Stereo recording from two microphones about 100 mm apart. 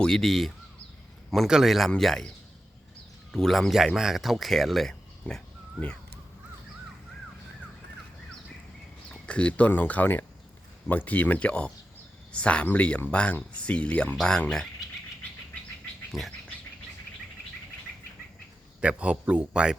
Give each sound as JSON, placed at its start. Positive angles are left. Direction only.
{"t": 0.0, "sound": "speech", "side_deg": 5}
{"t": 3.3, "sound": "speech", "side_deg": 0}
{"t": 9.2, "sound": "speech", "side_deg": 10}
{"t": 16.1, "sound": "speech", "side_deg": 0}
{"t": 18.8, "sound": "a man's voice", "side_deg": -10}